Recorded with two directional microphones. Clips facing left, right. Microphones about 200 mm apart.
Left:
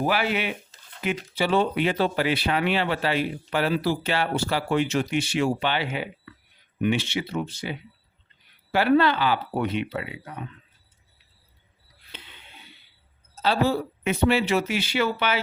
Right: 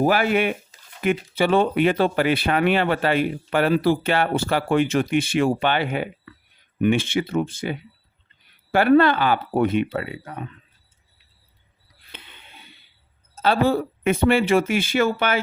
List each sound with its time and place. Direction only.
0.0 s speech: 50° right (ahead or behind)
12.1 s a sound: 55° right (ahead or behind)
13.3 s speech: 55° right (ahead or behind)